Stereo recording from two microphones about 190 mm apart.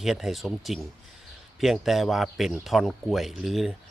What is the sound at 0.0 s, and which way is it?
Speech, centre (ahead or behind).